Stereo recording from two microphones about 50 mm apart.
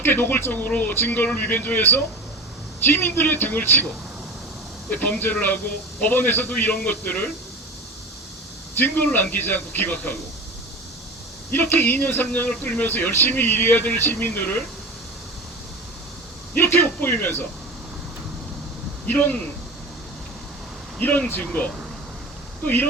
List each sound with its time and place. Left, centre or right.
0.0 s speech: left
4.9 s speech: left
8.7 s speech: left
11.5 s speech: left
13.7 s speech: left
14.0 s speech: left
16.6 s speech: left
19.0 s speech: left
21.0 s speech: left